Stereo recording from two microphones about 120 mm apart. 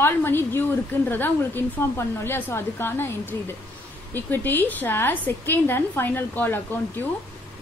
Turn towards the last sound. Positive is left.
turn(degrees=15)  # may be behind; listen again after turning